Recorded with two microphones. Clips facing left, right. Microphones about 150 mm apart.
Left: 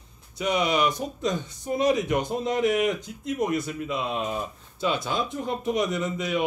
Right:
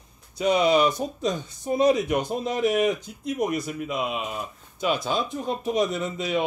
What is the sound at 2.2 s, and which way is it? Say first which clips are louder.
Speech: even; 20° left (ahead or behind).